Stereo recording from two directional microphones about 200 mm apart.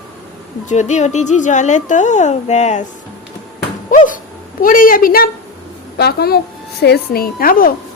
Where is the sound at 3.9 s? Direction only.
40° left (ahead or behind).